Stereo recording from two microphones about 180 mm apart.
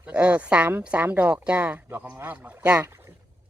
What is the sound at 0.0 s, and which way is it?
Speech, 5° right (ahead or behind).